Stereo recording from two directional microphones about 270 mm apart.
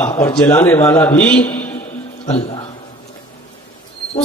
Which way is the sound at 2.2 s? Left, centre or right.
Left.